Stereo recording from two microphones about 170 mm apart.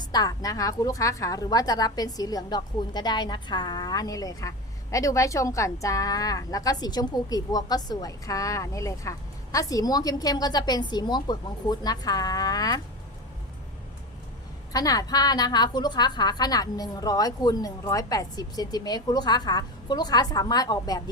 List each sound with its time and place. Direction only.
0.0 s a woman's voice: 25° left (ahead or behind)
14.7 s a woman's voice: 20° left (ahead or behind)